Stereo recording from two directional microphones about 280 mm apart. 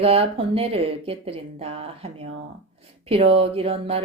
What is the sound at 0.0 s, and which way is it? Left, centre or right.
Speech, right.